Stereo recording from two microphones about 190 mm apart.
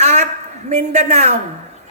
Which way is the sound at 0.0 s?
35° right (ahead or behind).